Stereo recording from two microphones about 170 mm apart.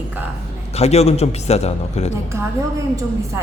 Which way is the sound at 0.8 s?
40° left (ahead or behind).